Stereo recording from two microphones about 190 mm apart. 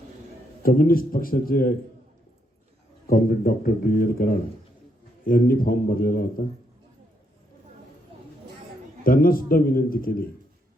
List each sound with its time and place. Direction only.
0.6 s speech: 50° left (ahead or behind)
3.1 s speech: 50° left (ahead or behind)
9.0 s speech: 50° left (ahead or behind)